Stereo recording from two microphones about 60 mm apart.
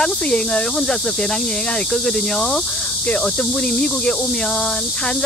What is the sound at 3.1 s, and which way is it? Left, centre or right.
Speech, left.